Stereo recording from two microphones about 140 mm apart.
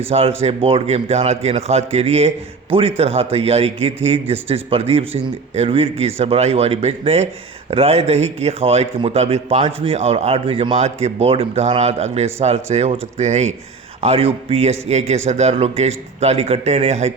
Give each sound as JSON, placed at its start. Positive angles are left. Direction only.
{"t": 0.1, "sound": "a man's voice", "side_deg": -45}